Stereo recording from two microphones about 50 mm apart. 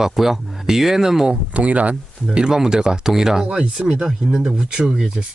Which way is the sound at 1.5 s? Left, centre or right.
Right.